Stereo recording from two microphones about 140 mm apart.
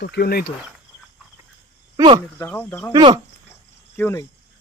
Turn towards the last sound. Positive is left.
turn(degrees=20)  # may be behind; listen again after turning